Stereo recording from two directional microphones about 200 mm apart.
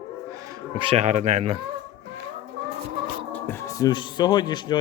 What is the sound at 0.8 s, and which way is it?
Speech, 30° right (ahead or behind).